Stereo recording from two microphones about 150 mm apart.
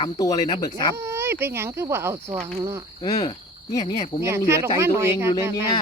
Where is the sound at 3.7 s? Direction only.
25° left (ahead or behind).